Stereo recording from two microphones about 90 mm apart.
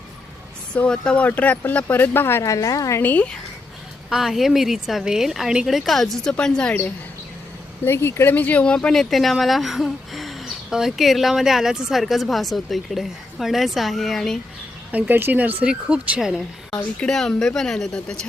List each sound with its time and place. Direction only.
0.7 s speech: 10° left (ahead or behind); by 3.0 s 40° left (ahead or behind)
3.0 s speech: 20° left (ahead or behind)
4.1 s a woman's voice: 5° right (ahead or behind); by 6.7 s 10° left (ahead or behind)
7.9 s speech: 30° left (ahead or behind); by 14.3 s 5° left (ahead or behind)
14.9 s speech: 20° right (ahead or behind)
16.7 s a woman's voice: 5° left (ahead or behind)